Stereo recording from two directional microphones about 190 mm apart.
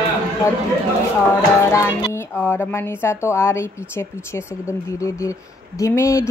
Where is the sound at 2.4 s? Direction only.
10° left (ahead or behind).